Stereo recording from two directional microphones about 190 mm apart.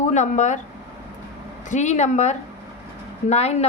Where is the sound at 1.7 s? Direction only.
40° left (ahead or behind).